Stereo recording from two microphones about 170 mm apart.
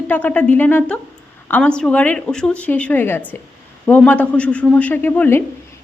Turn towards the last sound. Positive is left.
turn(degrees=10)  # may be behind; listen again after turning